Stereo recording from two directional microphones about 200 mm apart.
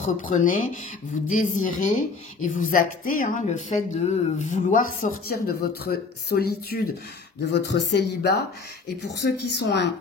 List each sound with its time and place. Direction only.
0.0 s a woman's voice: 40° left (ahead or behind)
7.4 s speech: 60° left (ahead or behind)